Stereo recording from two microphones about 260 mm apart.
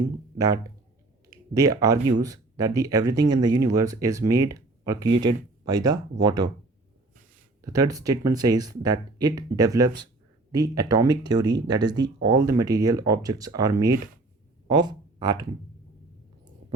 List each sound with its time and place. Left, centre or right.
0.3 s speech: centre
7.6 s speech: centre